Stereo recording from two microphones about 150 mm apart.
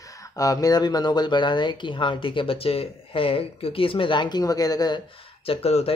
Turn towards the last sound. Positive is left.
turn(degrees=45)  # may be behind; listen again after turning